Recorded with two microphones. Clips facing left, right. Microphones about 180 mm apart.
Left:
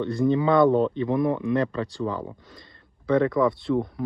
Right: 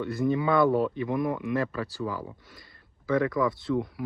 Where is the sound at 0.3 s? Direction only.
25° left (ahead or behind).